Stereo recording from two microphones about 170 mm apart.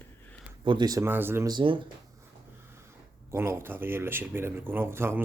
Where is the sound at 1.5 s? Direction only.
30° right (ahead or behind).